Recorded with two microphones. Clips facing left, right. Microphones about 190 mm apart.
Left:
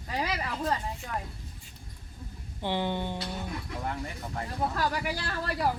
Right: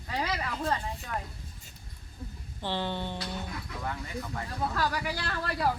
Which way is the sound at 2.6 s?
15° left (ahead or behind).